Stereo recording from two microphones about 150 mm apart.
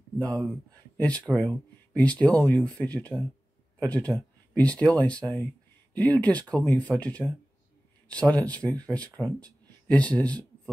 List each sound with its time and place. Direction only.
0.9 s speech: 10° left (ahead or behind)